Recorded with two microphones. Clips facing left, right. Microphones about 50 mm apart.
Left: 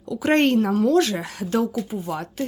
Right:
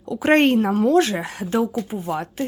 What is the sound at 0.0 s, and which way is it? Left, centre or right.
A woman's voice, right.